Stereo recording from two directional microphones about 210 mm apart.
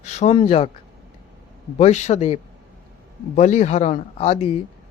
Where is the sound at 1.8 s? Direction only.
30° left (ahead or behind).